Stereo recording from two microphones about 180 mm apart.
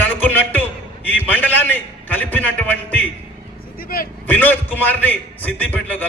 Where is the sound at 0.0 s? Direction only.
10° left (ahead or behind).